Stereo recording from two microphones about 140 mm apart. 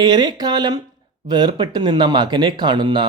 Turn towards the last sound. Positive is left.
turn(degrees=-30)  # may be behind; listen again after turning